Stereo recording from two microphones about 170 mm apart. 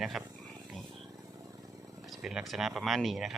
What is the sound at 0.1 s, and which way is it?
Speech, centre (ahead or behind).